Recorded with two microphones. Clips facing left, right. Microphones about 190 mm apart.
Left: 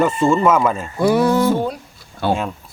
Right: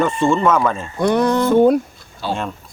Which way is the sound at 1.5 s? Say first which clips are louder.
Right 10 dB; 55° right (ahead or behind).